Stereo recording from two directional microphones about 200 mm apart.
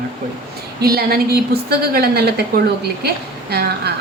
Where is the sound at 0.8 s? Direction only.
50° right (ahead or behind).